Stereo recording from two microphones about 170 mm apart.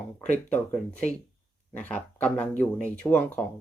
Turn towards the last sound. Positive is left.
turn(degrees=10)  # may be behind; listen again after turning